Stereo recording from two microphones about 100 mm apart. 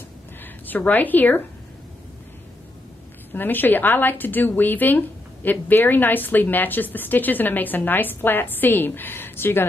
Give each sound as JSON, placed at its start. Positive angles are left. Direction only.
{"t": 0.4, "sound": "a woman's voice", "side_deg": 20}
{"t": 3.3, "sound": "a woman's voice", "side_deg": 20}